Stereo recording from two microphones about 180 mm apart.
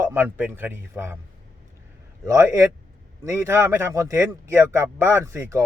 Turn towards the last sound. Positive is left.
turn(degrees=-15)  # may be behind; listen again after turning